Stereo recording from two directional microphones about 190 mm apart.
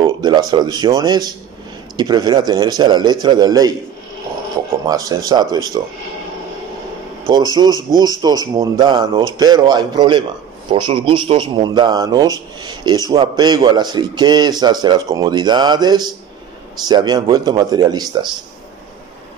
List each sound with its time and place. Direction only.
0.0 s a man's voice: 20° right (ahead or behind)
4.8 s a man's voice: 20° right (ahead or behind)
7.2 s a man's voice: 20° right (ahead or behind)